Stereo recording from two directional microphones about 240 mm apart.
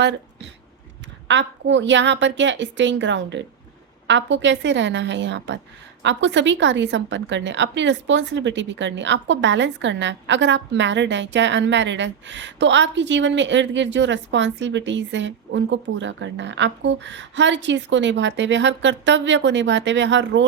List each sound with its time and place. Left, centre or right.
1.3 s a woman's voice: right